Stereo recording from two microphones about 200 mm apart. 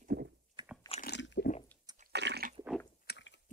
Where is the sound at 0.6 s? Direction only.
25° right (ahead or behind).